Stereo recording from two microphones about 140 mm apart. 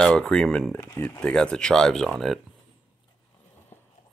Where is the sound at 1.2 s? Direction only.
5° left (ahead or behind).